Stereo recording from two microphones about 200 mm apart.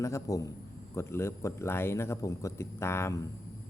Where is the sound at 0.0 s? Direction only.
15° left (ahead or behind).